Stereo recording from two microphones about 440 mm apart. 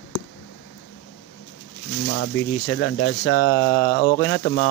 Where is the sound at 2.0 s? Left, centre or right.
Left.